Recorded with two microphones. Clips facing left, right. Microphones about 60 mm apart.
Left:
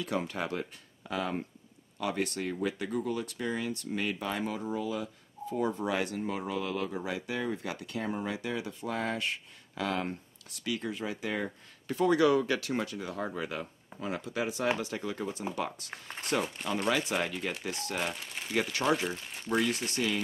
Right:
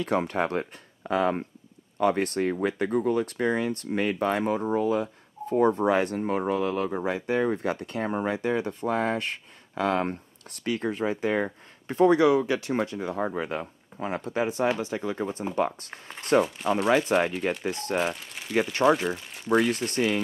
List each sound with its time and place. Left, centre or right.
0.0 s speech: right
12.3 s speech: right
14.8 s speech: right
15.9 s speech: centre
16.6 s speech: right
17.6 s speech: right
17.9 s speech: centre
19.5 s speech: right